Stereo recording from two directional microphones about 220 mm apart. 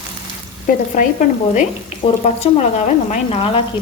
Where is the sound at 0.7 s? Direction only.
40° left (ahead or behind).